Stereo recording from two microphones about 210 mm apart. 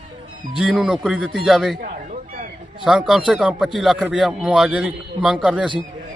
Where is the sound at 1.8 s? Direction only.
40° right (ahead or behind).